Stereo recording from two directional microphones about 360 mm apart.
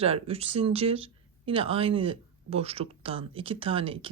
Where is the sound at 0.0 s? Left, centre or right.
Centre.